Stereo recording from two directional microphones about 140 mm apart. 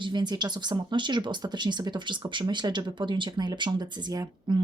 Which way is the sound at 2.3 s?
30° right (ahead or behind).